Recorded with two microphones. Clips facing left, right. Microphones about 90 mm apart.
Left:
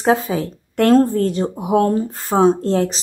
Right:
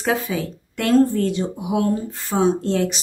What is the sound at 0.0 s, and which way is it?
A woman's voice, 35° left (ahead or behind).